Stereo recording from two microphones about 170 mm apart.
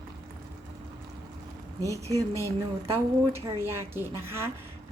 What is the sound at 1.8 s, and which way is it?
Speech, 20° right (ahead or behind).